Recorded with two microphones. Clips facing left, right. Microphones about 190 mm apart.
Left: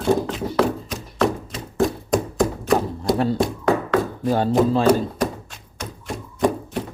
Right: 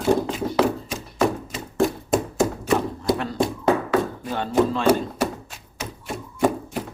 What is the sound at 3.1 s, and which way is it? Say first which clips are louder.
Hands: left 7 dB; 35° left (ahead or behind).